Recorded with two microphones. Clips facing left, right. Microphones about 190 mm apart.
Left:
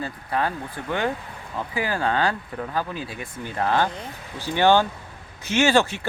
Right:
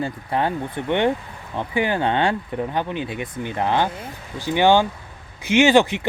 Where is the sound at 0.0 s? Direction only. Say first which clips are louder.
Right 3 dB; 25° right (ahead or behind).